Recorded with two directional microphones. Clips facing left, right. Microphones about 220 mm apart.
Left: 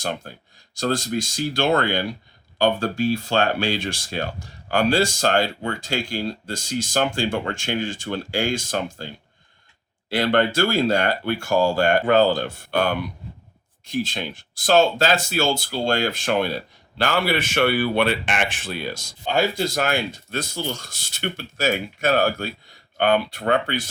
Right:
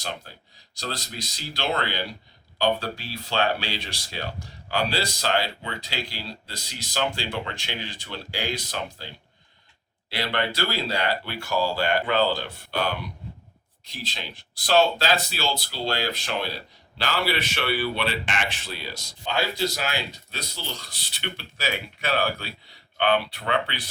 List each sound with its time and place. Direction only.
0.0 s speech: 50° left (ahead or behind)
10.1 s speech: 50° left (ahead or behind)